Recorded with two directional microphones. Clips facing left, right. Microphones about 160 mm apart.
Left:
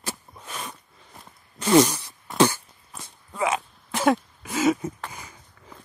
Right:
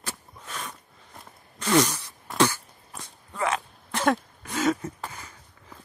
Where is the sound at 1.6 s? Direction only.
25° left (ahead or behind).